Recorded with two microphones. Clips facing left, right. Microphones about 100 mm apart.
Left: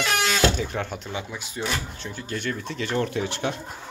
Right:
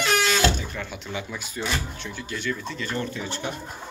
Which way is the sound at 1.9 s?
40° left (ahead or behind).